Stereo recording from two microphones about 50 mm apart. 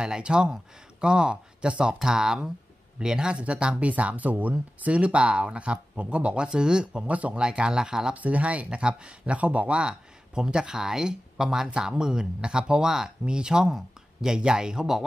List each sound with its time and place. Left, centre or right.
0.0 s speech: centre
7.4 s speech: centre
8.1 s speech: right